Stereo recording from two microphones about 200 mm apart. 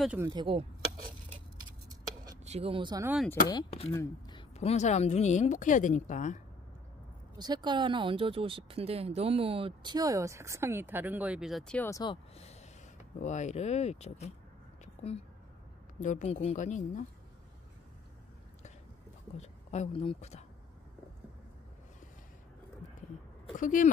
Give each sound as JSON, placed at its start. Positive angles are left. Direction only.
{"t": 0.2, "sound": "speech", "side_deg": -20}
{"t": 1.6, "sound": "a sound", "side_deg": -20}
{"t": 2.4, "sound": "speech", "side_deg": -30}
{"t": 3.9, "sound": "speech", "side_deg": 15}
{"t": 4.4, "sound": "speech", "side_deg": 30}
{"t": 7.3, "sound": "speech", "side_deg": -20}
{"t": 12.0, "sound": "speech", "side_deg": 25}
{"t": 16.0, "sound": "speech", "side_deg": 40}
{"t": 19.3, "sound": "speech", "side_deg": 35}
{"t": 23.6, "sound": "speech", "side_deg": 40}